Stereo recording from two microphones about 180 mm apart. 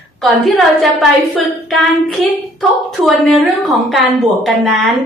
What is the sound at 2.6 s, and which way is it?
A woman's voice, centre (ahead or behind).